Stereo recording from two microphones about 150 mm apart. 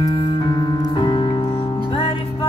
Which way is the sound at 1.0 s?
35° left (ahead or behind).